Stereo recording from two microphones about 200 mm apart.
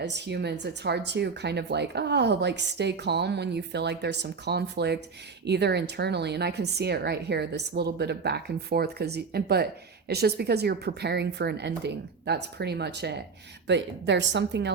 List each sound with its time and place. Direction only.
0.0 s speech: 60° right (ahead or behind)